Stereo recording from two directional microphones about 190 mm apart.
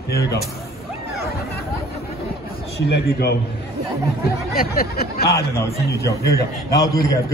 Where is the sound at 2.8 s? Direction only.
60° left (ahead or behind).